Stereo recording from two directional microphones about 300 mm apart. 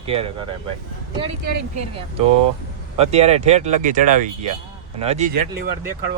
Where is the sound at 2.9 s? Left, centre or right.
Right.